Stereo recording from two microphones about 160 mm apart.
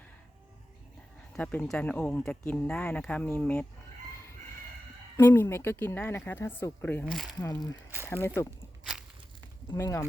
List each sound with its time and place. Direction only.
1.3 s speech: 10° left (ahead or behind)
5.1 s speech: 15° left (ahead or behind)
8.8 s a sound: 5° right (ahead or behind)
9.7 s speech: 20° left (ahead or behind)